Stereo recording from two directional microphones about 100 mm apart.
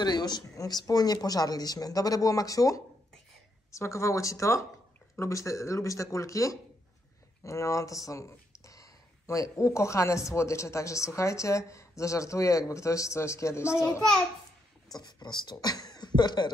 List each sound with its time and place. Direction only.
0.0 s speech: 45° left (ahead or behind); by 13.8 s 30° left (ahead or behind)
15.0 s speech: 45° left (ahead or behind)